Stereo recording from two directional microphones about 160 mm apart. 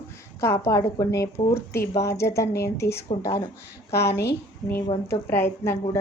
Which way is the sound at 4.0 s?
90° left.